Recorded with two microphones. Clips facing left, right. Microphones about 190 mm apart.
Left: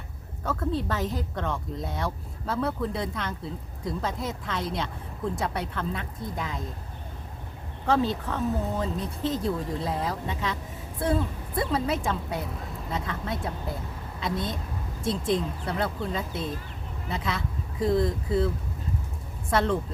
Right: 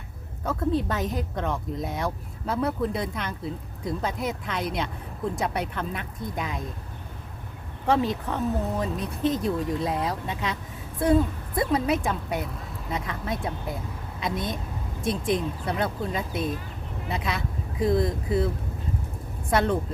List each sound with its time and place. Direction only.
0.4 s a woman's voice: 20° right (ahead or behind)
7.9 s a woman's voice: 15° right (ahead or behind)